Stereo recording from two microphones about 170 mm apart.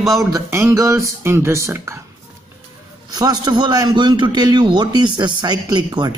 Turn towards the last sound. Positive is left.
turn(degrees=-25)  # may be behind; listen again after turning